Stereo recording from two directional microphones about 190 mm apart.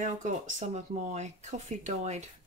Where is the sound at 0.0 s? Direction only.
40° right (ahead or behind).